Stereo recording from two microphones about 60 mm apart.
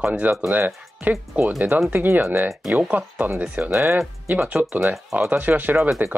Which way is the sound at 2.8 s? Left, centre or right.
Right.